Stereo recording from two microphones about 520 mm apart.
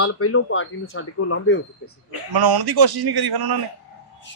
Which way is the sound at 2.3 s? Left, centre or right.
Right.